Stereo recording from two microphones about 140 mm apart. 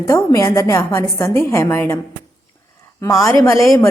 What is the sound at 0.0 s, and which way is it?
A woman's voice, 20° left (ahead or behind).